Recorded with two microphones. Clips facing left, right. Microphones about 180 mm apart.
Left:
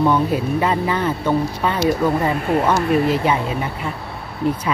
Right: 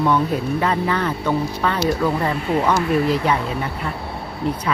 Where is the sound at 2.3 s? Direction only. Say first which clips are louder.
Left 2 dB; 50° left (ahead or behind).